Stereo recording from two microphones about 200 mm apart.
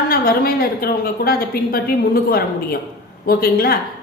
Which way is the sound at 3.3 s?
50° left (ahead or behind).